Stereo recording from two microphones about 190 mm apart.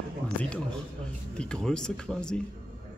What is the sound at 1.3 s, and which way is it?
Speech, 5° left (ahead or behind).